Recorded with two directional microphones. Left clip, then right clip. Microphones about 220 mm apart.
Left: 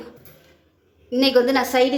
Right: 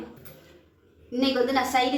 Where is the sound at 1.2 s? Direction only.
50° left (ahead or behind).